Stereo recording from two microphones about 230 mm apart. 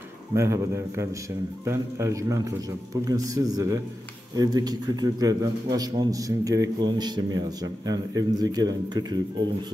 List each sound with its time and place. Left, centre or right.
0.3 s a man's voice: centre